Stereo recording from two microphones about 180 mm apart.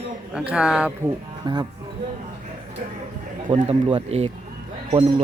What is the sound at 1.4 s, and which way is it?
Speech, 25° right (ahead or behind).